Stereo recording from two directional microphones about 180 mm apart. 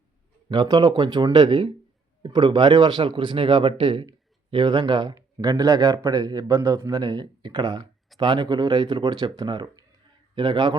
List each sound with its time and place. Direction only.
0.4 s speech: 25° right (ahead or behind)